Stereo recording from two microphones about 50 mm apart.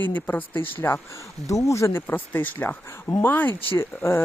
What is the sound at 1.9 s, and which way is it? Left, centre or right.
Speech, left.